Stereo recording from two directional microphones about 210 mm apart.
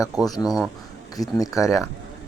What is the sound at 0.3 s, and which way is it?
Speech, 20° left (ahead or behind).